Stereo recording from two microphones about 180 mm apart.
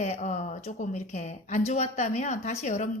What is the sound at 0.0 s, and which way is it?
A woman's voice, 40° left (ahead or behind).